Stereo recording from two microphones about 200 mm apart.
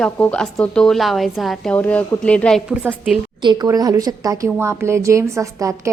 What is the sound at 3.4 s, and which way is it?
A woman's voice, 20° right (ahead or behind).